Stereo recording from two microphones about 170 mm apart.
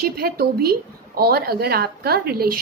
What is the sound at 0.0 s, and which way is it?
A woman's voice, 60° right (ahead or behind).